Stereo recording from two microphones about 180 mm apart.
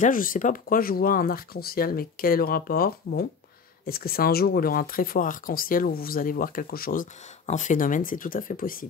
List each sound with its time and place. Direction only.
0.0 s speech: 50° left (ahead or behind)